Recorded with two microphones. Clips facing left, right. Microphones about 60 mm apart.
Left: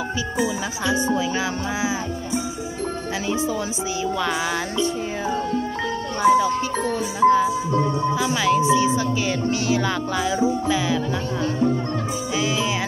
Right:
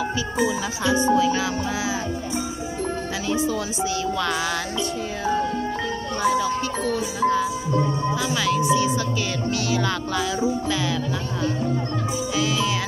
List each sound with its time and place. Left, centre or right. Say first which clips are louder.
4.0 s music: left 4 dB; centre
8.5 s music: left 3 dB; left